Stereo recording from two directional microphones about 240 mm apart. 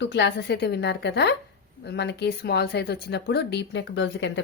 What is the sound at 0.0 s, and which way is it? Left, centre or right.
Speech, left.